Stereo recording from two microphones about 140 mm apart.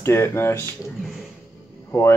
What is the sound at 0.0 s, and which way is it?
Speech, 20° left (ahead or behind).